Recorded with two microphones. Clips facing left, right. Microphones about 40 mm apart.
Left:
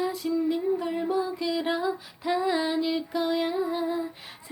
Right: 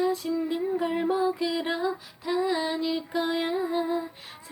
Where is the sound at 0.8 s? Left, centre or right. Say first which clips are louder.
Right 2 dB; right.